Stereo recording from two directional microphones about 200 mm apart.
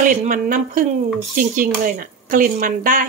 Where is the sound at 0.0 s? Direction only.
40° right (ahead or behind).